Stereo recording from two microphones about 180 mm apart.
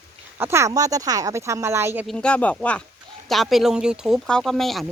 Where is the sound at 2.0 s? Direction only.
5° left (ahead or behind).